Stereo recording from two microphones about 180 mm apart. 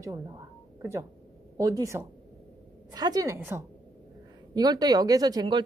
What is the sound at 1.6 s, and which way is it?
A woman's voice, 20° right (ahead or behind).